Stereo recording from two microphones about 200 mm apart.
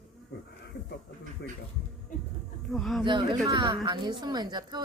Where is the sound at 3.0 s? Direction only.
20° right (ahead or behind).